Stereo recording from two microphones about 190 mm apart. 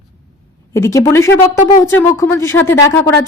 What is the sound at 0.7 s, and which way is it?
A woman's voice, 15° left (ahead or behind).